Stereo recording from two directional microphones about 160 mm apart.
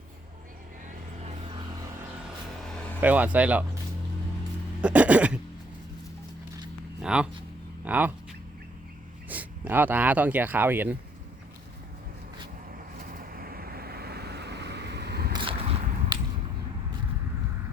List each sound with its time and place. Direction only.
3.0 s a man's voice: 10° right (ahead or behind)
4.8 s a man's voice: 10° right (ahead or behind)
7.0 s speech: 5° right (ahead or behind)
9.3 s speech: 10° right (ahead or behind)
13.1 s vehicle: 65° right (ahead or behind); by 15.3 s 90° right
15.3 s a sound: 30° right (ahead or behind)